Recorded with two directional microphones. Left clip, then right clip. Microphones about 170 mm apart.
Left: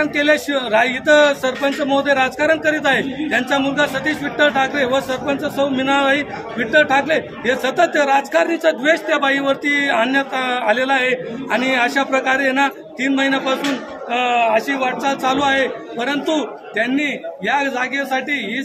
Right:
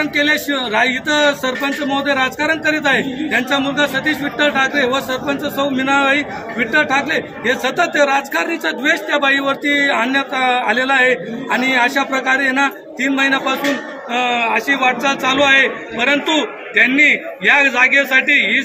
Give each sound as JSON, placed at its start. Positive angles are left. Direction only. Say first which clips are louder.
{"t": 0.0, "sound": "a man's voice", "louder": "even", "side_deg": 10}
{"t": 15.0, "sound": "a man's voice", "louder": "right 2 dB", "side_deg": 35}